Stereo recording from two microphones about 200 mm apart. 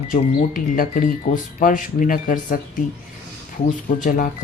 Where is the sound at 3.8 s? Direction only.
40° left (ahead or behind).